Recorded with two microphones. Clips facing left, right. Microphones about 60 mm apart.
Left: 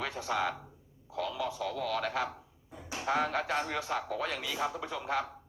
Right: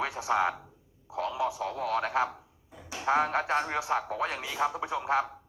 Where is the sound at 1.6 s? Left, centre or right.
Right.